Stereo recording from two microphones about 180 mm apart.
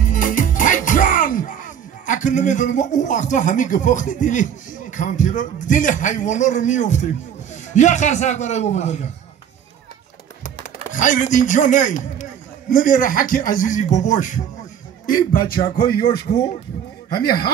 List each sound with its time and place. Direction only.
0.0 s a man's voice: 45° left (ahead or behind)
10.6 s a man's voice: 45° left (ahead or behind)
17.1 s speech: 55° left (ahead or behind)